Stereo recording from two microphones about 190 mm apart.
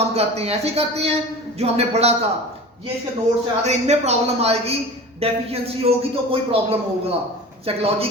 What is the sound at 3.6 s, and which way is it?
A man's voice, 35° right (ahead or behind).